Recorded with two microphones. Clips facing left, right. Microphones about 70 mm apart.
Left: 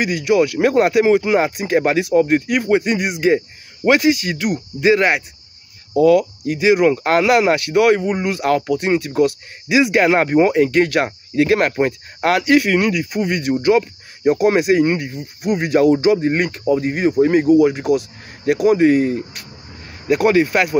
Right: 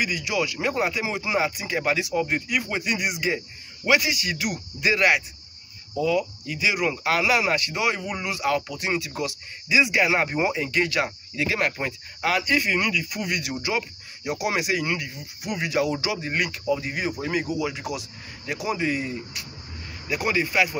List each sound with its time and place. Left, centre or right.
0.0 s speech: left
5.9 s speech: left
13.1 s speech: left